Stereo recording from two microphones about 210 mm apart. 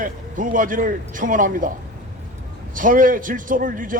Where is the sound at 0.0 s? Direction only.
40° right (ahead or behind).